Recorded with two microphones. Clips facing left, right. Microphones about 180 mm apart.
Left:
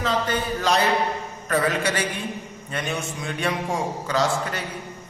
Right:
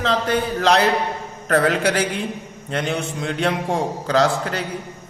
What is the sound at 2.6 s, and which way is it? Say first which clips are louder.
A man's voice: right 5 dB; 90° right.